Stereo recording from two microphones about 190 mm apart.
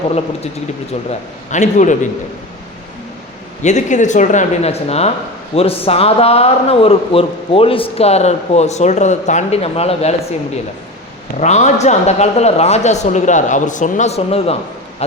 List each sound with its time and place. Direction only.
1.5 s a man's voice: 40° left (ahead or behind)
3.6 s a man's voice: 40° left (ahead or behind)
11.3 s a man's voice: 35° left (ahead or behind)